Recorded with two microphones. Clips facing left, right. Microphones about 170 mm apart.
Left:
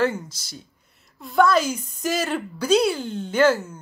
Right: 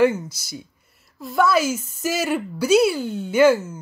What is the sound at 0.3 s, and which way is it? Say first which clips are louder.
A woman's voice: right 6 dB; 10° right (ahead or behind).